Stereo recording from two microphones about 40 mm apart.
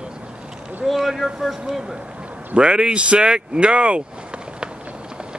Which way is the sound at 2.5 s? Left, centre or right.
Right.